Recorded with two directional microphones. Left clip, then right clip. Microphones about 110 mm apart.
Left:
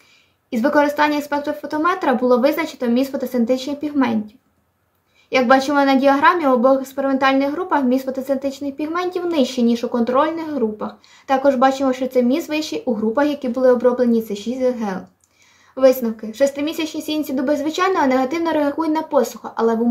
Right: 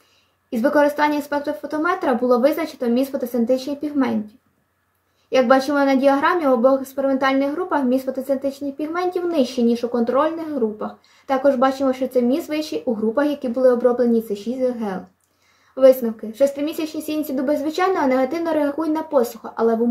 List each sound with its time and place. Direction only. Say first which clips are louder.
0.5 s a woman's voice: left 1 dB; 20° left (ahead or behind)
5.3 s a woman's voice: left 1 dB; 25° left (ahead or behind)